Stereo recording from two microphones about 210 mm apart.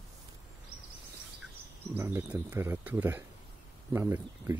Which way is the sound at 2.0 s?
10° right (ahead or behind).